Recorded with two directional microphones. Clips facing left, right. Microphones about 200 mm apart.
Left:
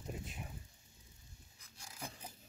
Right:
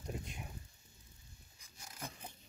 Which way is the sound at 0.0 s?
Centre (ahead or behind).